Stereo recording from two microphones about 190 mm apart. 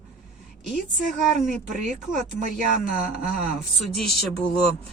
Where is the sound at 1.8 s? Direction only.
40° right (ahead or behind).